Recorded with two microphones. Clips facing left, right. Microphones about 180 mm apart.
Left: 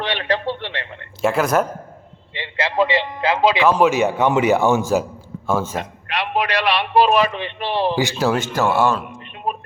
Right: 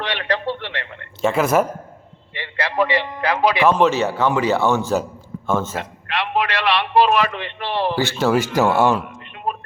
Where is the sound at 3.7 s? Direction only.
10° left (ahead or behind).